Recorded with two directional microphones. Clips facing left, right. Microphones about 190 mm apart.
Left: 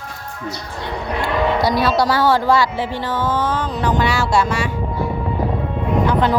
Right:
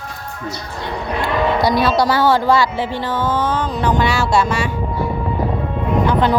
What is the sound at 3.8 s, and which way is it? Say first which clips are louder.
Speech: right 1 dB; 30° right (ahead or behind).